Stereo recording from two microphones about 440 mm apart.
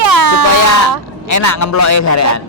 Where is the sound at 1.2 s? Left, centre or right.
Left.